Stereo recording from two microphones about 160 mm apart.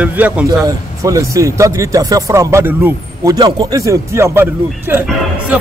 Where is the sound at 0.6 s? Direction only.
20° right (ahead or behind).